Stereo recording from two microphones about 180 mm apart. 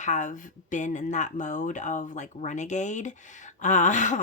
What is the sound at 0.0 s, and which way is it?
Speech, 45° left (ahead or behind).